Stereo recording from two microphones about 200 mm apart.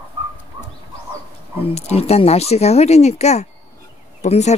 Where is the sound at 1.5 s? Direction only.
30° left (ahead or behind).